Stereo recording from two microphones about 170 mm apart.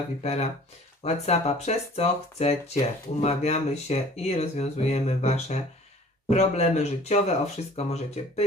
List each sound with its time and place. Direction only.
0.2 s speech: 40° left (ahead or behind)